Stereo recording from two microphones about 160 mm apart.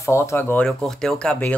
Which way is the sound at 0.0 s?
15° left (ahead or behind).